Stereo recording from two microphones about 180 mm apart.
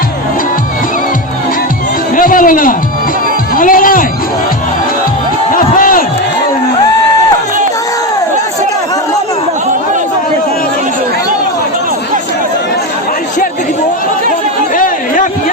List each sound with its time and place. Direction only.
2.1 s a sound: 50° left (ahead or behind)
5.5 s crowd: 50° left (ahead or behind)
14.8 s chatter: 50° left (ahead or behind)